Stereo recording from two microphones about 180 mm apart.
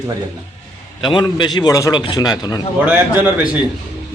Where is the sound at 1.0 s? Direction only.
25° left (ahead or behind).